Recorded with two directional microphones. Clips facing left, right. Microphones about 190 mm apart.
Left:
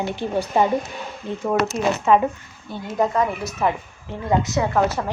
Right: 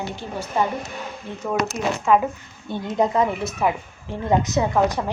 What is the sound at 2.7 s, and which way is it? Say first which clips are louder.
Speech: right 1 dB; 20° right (ahead or behind).